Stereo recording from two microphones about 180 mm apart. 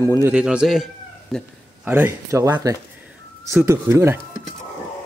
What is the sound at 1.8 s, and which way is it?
A man's voice, 10° right (ahead or behind).